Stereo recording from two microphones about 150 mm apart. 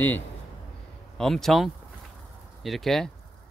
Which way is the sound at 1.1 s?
Centre (ahead or behind).